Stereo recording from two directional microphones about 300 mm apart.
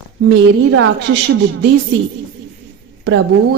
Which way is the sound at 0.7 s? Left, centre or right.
Right.